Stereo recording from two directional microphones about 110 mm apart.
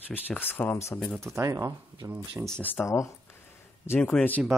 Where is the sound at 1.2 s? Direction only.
25° right (ahead or behind).